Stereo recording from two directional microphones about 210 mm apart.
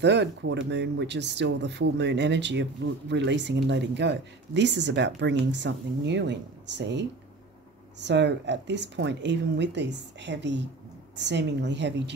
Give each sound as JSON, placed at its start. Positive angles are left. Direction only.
{"t": 0.0, "sound": "speech", "side_deg": -55}